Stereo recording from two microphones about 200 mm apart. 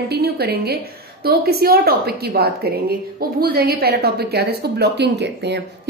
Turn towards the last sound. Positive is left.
turn(degrees=-60)  # may be behind; listen again after turning